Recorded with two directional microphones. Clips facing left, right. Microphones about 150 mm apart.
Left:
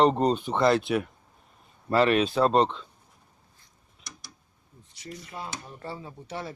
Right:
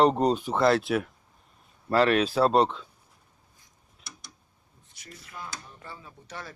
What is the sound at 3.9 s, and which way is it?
Tick-tock, centre (ahead or behind).